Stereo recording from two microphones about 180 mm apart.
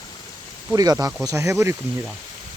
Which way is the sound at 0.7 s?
20° right (ahead or behind).